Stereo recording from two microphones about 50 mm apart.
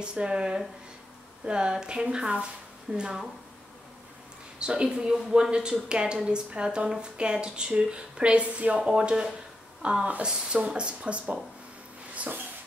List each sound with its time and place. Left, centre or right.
0.0 s speech: centre
4.6 s speech: centre